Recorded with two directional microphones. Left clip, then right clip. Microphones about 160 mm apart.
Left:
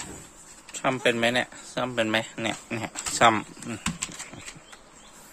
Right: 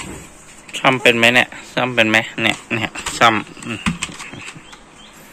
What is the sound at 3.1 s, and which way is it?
Speech, 40° left (ahead or behind).